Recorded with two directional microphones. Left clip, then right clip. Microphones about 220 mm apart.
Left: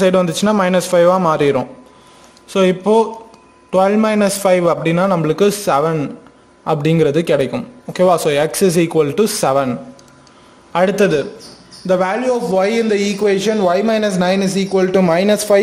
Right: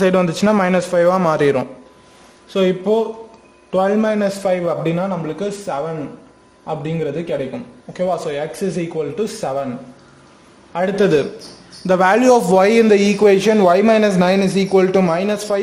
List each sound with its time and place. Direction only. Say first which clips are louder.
0.0 s a man's voice: left 2 dB; centre (ahead or behind)
2.5 s a man's voice: left 3 dB; 15° left (ahead or behind)
4.2 s a man's voice: left 5 dB; 20° left (ahead or behind)
5.2 s a man's voice: left 9 dB; 45° left (ahead or behind); by 9.7 s 25° left (ahead or behind)
10.7 s a man's voice: left 5 dB; 20° left (ahead or behind)
11.8 s speech: right 1 dB; 15° right (ahead or behind)
12.1 s a man's voice: right 5 dB; 35° right (ahead or behind); by 14.9 s 10° right (ahead or behind)
14.9 s a man's voice: left 2 dB; centre (ahead or behind)
15.1 s a man's voice: left 6 dB; 15° left (ahead or behind)